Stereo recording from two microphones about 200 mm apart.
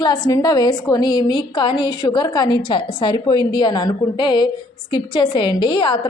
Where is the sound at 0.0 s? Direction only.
20° left (ahead or behind).